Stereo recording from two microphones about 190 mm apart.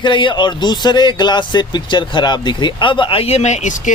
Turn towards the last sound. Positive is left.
turn(degrees=40)  # may be behind; listen again after turning